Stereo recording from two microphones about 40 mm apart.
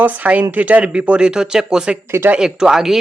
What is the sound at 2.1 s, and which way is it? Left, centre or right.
Speech, right.